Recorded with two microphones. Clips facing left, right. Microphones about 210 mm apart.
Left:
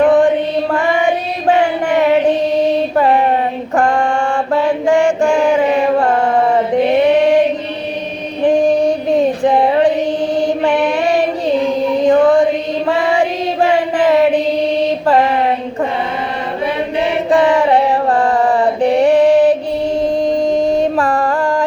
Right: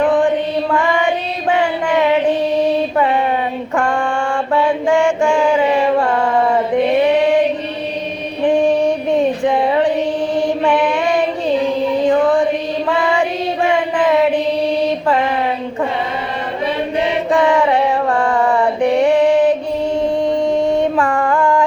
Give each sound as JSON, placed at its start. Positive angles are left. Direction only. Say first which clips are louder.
{"t": 0.0, "sound": "mantra", "louder": "left 4 dB", "side_deg": 40}
{"t": 1.5, "sound": "chant", "louder": "left 3 dB", "side_deg": 40}
{"t": 2.9, "sound": "mantra", "louder": "left 3 dB", "side_deg": 40}
{"t": 8.4, "sound": "female singing", "louder": "left 2 dB", "side_deg": 40}
{"t": 10.3, "sound": "mantra", "louder": "even", "side_deg": 40}
{"t": 12.0, "sound": "music", "louder": "left 4 dB", "side_deg": 40}
{"t": 12.9, "sound": "female singing", "louder": "left 2 dB", "side_deg": 40}
{"t": 15.0, "sound": "mantra", "louder": "left 4 dB", "side_deg": 40}
{"t": 17.3, "sound": "mantra", "louder": "left 3 dB", "side_deg": 35}
{"t": 20.0, "sound": "a sound", "louder": "left 1 dB", "side_deg": 35}